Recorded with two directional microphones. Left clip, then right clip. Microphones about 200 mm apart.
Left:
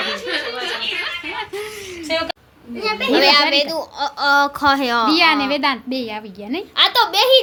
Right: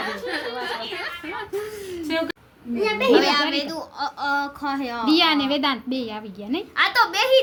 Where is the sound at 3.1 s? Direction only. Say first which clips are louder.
Left 6 dB; 35° left (ahead or behind); by 5.0 s 50° left (ahead or behind).